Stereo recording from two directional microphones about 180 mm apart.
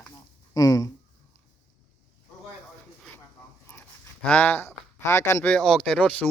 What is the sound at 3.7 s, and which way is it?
Speech, 10° left (ahead or behind).